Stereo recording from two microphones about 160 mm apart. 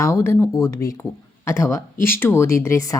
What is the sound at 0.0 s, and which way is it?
A woman's voice, 15° left (ahead or behind).